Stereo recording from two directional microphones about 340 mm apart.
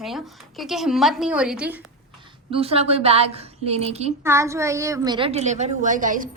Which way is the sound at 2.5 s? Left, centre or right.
Centre.